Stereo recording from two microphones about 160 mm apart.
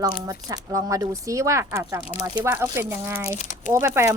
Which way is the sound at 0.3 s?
20° right (ahead or behind).